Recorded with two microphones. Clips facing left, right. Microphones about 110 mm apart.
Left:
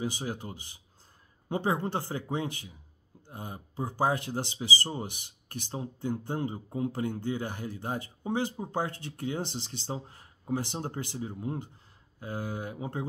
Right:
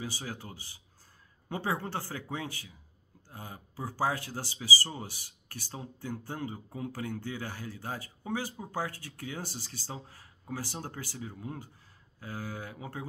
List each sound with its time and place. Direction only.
0.0 s speech: 20° left (ahead or behind)